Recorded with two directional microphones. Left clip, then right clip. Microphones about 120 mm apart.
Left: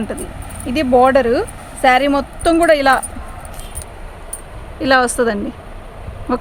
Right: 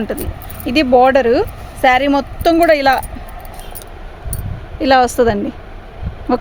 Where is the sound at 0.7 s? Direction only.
90° right; by 3.0 s 50° right (ahead or behind).